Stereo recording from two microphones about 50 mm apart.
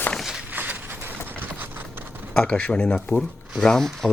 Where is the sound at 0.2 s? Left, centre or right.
Centre.